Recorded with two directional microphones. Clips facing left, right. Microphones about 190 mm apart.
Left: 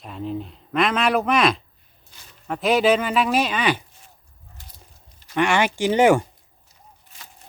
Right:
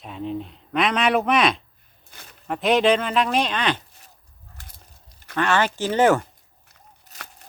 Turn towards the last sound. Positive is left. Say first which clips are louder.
# left 1 dB
turn(degrees=-65)  # may be behind; listen again after turning